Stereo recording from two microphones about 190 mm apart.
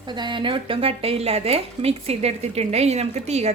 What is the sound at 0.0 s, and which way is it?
A woman's voice, 25° right (ahead or behind).